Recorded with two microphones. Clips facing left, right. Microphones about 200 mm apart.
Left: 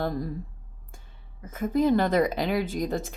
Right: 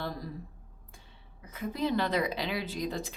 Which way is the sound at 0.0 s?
50° left (ahead or behind).